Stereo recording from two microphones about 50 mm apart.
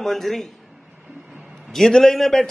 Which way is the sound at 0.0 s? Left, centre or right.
Centre.